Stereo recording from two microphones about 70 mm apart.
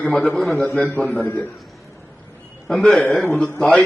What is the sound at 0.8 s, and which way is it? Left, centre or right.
Speech, left.